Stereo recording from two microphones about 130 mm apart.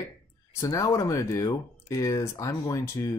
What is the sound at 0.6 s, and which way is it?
Speech, 25° left (ahead or behind).